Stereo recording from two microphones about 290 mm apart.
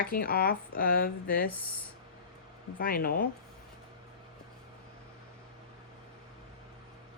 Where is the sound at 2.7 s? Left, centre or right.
Left.